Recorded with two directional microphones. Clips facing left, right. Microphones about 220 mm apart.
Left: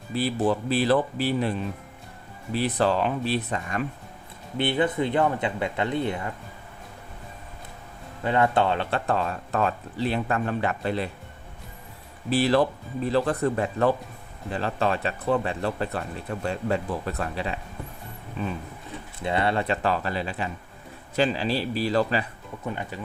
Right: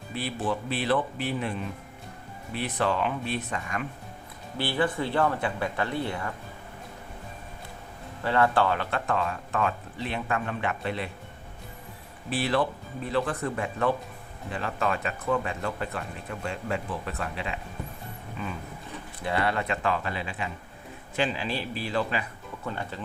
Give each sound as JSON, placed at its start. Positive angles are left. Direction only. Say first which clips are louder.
{"t": 0.1, "sound": "speech", "louder": "left 6 dB", "side_deg": 35}
{"t": 4.5, "sound": "speech", "louder": "left 4 dB", "side_deg": 20}
{"t": 8.2, "sound": "speech", "louder": "left 1 dB", "side_deg": 20}
{"t": 12.3, "sound": "speech", "louder": "left 5 dB", "side_deg": 35}
{"t": 19.2, "sound": "speech", "louder": "left 3 dB", "side_deg": 25}
{"t": 22.6, "sound": "speech", "louder": "left 2 dB", "side_deg": 15}